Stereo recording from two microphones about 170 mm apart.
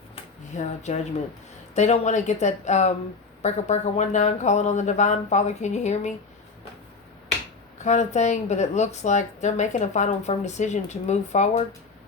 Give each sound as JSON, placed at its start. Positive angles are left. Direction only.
{"t": 0.5, "sound": "speech", "side_deg": 45}
{"t": 7.9, "sound": "speech", "side_deg": 45}